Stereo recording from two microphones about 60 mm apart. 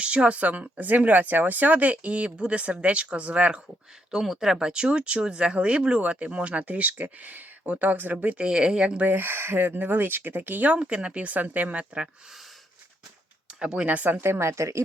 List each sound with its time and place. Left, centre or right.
0.0 s speech: centre
4.1 s speech: centre
9.0 s speech: right
10.8 s speech: centre
13.5 s speech: centre
13.8 s speech: right